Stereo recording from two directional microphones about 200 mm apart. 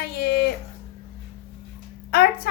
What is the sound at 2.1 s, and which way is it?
Speech, 50° left (ahead or behind).